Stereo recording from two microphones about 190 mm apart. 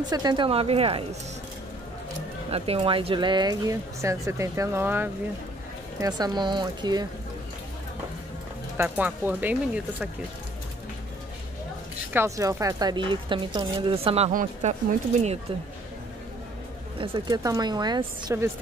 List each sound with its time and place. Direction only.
0.0 s speech: 20° right (ahead or behind)
2.5 s speech: 30° right (ahead or behind)
8.7 s speech: 10° right (ahead or behind)
12.1 s speech: 15° right (ahead or behind); by 14.3 s 30° right (ahead or behind)
14.3 s speech: 40° right (ahead or behind)
17.0 s speech: 25° right (ahead or behind)